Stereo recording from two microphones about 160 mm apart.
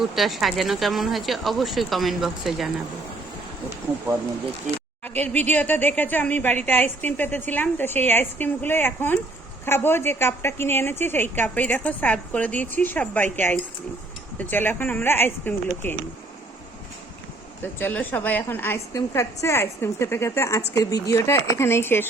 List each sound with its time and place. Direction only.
0.0 s speech: centre (ahead or behind)
5.0 s a woman's voice: 10° left (ahead or behind)
17.6 s a woman's voice: 10° left (ahead or behind)